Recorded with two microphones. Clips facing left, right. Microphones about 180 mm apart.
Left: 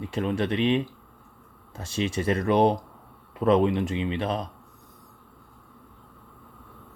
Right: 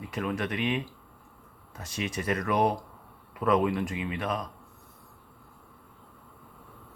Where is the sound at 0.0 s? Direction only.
30° left (ahead or behind).